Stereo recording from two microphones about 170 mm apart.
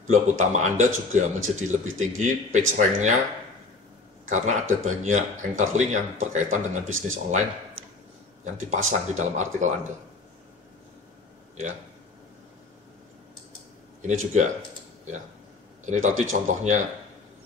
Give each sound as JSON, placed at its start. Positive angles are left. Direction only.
{"t": 0.0, "sound": "a man's voice", "side_deg": -45}
{"t": 4.3, "sound": "a man's voice", "side_deg": -45}
{"t": 7.8, "sound": "a sound", "side_deg": -35}
{"t": 8.5, "sound": "a man's voice", "side_deg": -45}
{"t": 14.0, "sound": "a man's voice", "side_deg": -45}
{"t": 15.8, "sound": "a man's voice", "side_deg": -45}